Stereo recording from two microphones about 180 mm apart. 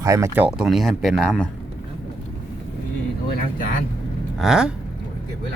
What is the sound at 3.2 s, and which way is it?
Speech, 55° left (ahead or behind).